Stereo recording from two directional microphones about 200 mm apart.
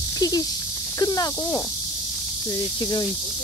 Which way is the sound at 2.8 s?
20° left (ahead or behind).